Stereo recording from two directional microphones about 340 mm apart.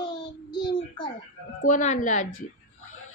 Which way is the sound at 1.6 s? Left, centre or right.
Left.